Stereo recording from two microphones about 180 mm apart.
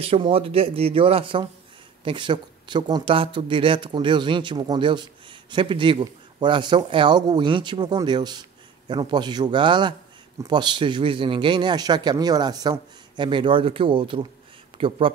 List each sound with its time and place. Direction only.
0.0 s speech: 30° right (ahead or behind)